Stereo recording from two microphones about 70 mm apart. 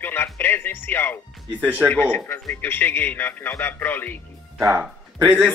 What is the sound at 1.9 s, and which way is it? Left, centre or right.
Speech, left.